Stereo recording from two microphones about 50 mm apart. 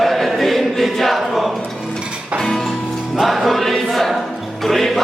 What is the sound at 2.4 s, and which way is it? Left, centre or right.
Music, centre.